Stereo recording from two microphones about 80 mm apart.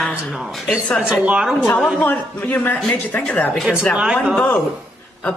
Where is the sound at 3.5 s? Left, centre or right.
Centre.